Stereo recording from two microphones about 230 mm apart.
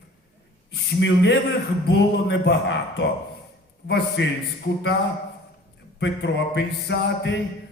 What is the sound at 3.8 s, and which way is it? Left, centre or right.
Mantra, left.